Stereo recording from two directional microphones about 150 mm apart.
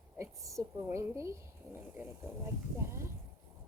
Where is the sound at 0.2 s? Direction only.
20° right (ahead or behind).